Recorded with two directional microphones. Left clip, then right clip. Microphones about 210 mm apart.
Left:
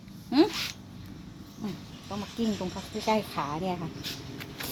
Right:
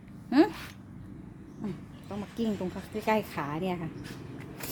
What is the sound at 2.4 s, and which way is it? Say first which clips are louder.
A woman's voice: even; 15° right (ahead or behind).